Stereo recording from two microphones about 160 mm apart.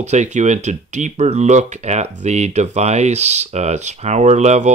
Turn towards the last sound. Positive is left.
turn(degrees=-45)  # may be behind; listen again after turning